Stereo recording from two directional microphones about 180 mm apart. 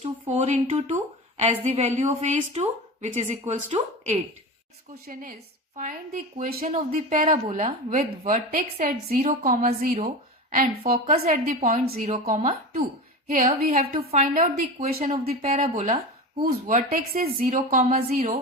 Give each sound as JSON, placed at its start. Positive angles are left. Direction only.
{"t": 0.0, "sound": "a woman's voice", "side_deg": -40}
{"t": 5.7, "sound": "a woman's voice", "side_deg": -45}
{"t": 8.3, "sound": "a woman's voice", "side_deg": -45}
{"t": 15.3, "sound": "a woman's voice", "side_deg": -35}